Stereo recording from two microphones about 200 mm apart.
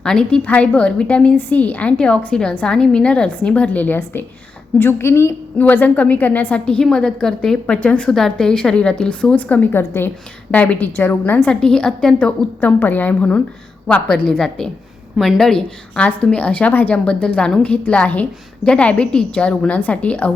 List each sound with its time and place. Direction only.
0.0 s a woman's voice: 5° left (ahead or behind)